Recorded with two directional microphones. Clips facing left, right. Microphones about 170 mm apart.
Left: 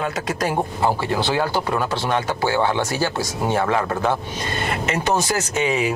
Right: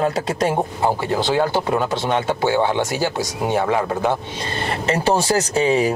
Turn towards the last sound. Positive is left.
turn(degrees=-35)  # may be behind; listen again after turning